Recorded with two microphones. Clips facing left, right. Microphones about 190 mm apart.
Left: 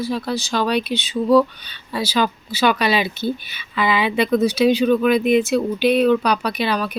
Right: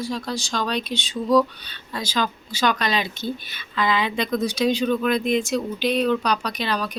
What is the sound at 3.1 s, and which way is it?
Speech, 65° left (ahead or behind).